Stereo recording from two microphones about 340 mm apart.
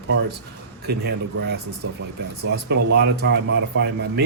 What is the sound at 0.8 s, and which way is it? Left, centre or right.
Speech, right.